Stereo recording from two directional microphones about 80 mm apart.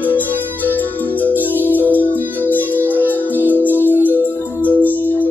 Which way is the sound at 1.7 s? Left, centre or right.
Left.